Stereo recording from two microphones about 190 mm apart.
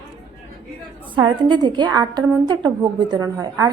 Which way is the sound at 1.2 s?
20° right (ahead or behind).